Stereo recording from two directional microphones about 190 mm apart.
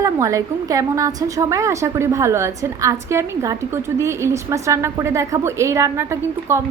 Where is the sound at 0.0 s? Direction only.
15° right (ahead or behind).